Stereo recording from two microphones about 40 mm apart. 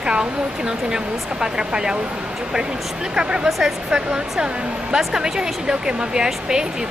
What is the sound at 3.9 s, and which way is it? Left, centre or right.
Speech, right.